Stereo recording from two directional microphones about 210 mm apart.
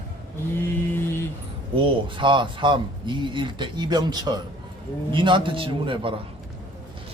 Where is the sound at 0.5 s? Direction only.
10° left (ahead or behind).